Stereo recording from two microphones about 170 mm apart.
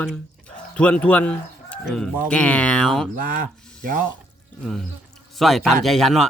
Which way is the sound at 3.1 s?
55° right (ahead or behind).